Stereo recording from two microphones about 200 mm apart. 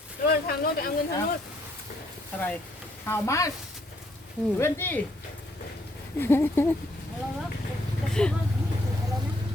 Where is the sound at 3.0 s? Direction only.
10° left (ahead or behind).